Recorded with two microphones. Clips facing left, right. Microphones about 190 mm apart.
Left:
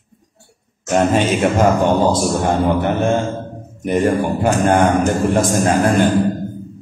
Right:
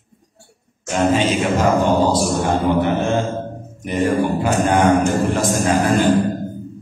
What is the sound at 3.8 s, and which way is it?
A man's voice, 50° left (ahead or behind).